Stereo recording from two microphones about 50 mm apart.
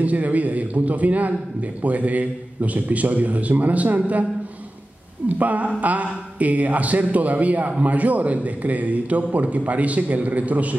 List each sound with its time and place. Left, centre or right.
0.0 s a man's voice: right
5.4 s a man's voice: right